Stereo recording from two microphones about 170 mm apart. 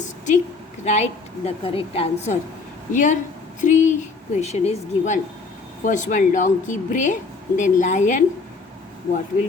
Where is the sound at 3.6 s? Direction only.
45° left (ahead or behind).